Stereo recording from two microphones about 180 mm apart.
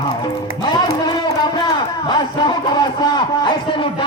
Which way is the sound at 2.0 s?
25° left (ahead or behind).